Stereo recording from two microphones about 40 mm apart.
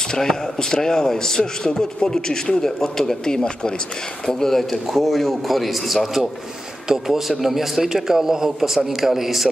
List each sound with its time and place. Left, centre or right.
0.1 s a man's voice: centre